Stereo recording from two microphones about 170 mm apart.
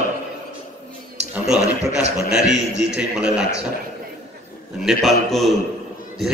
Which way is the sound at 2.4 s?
90° right.